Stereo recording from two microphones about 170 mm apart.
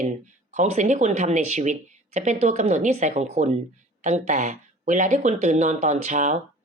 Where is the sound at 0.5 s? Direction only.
45° right (ahead or behind).